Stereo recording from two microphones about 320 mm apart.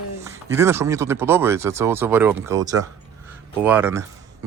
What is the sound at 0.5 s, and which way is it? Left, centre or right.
Speech, centre.